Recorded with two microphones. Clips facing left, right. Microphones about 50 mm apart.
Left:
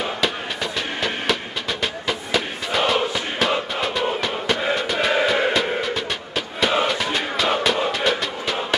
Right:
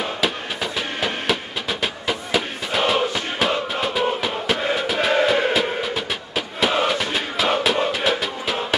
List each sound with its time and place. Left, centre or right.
0.0 s music: centre